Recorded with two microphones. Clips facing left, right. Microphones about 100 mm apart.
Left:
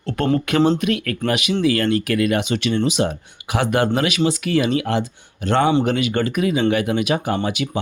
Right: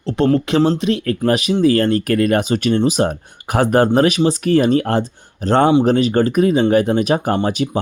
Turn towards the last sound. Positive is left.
turn(degrees=-40)  # may be behind; listen again after turning